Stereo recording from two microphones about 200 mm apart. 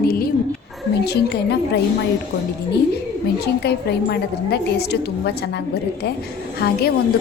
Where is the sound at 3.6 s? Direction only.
55° left (ahead or behind).